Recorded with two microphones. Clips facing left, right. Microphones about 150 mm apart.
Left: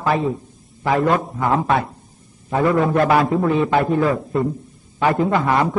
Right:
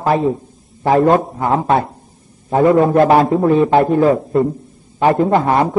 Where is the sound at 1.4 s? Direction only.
25° right (ahead or behind).